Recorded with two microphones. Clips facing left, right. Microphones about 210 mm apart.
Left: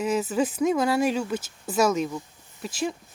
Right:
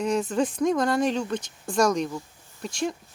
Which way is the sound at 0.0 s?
5° left (ahead or behind).